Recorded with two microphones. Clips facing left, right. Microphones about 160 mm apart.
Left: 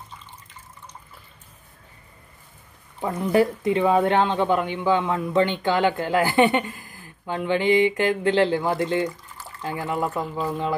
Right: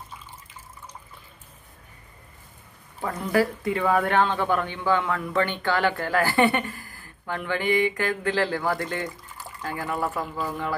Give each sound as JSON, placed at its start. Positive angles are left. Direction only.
{"t": 3.0, "sound": "speech", "side_deg": 20}